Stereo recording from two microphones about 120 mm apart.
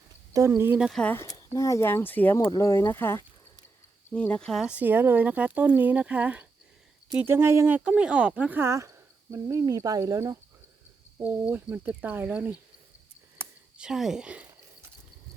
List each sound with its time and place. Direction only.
0.3 s speech: 25° right (ahead or behind)
0.8 s speech: 5° right (ahead or behind)
1.0 s speech: 20° left (ahead or behind)
2.5 s speech: 25° left (ahead or behind); by 4.6 s 5° left (ahead or behind)
4.6 s speech: 10° right (ahead or behind)
7.9 s speech: 10° right (ahead or behind); by 10.3 s 25° right (ahead or behind)
11.4 s speech: 15° right (ahead or behind)